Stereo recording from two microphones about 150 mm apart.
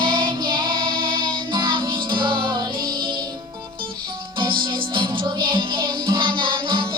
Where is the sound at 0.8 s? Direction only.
75° right (ahead or behind).